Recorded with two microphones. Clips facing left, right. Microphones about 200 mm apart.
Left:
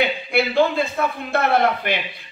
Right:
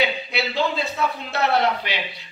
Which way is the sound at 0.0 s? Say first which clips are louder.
Left 4 dB; 50° left (ahead or behind).